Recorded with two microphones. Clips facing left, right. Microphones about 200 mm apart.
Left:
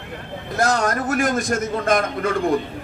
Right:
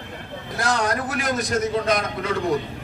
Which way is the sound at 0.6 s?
45° left (ahead or behind).